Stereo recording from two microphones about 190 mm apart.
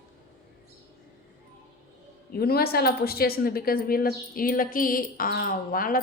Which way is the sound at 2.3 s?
55° left (ahead or behind).